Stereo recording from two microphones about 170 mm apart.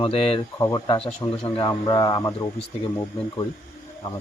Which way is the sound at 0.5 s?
20° left (ahead or behind).